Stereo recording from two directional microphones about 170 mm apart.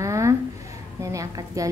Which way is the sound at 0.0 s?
20° right (ahead or behind).